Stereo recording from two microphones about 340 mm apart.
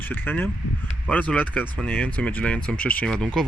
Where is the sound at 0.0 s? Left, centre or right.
Centre.